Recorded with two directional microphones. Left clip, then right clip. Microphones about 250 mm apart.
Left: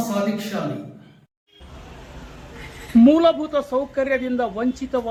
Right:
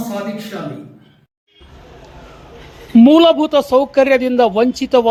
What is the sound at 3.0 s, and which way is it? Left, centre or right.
A man's voice, right.